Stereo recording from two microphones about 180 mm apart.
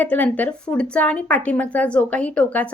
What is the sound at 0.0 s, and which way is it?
A woman's voice, 10° left (ahead or behind).